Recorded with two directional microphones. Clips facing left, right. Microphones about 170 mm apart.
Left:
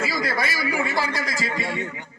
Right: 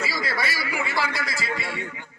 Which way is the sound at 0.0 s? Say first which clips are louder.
Left 3 dB; 50° left (ahead or behind).